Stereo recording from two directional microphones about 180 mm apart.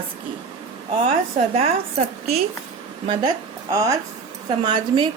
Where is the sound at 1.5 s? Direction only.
35° right (ahead or behind).